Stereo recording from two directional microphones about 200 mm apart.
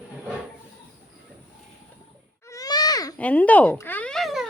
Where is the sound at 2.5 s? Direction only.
20° left (ahead or behind).